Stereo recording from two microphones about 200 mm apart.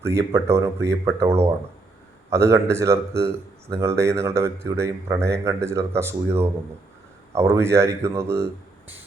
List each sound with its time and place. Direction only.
0.3 s speech: 15° right (ahead or behind)